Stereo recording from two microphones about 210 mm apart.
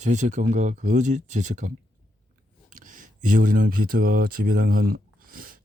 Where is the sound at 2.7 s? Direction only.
40° right (ahead or behind).